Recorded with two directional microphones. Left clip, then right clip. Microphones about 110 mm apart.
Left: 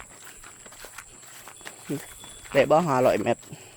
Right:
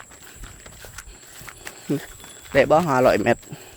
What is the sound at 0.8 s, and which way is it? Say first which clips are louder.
Horse: right 2 dB; centre (ahead or behind).